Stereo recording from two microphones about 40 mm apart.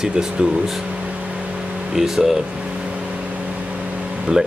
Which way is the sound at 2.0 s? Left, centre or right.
Centre.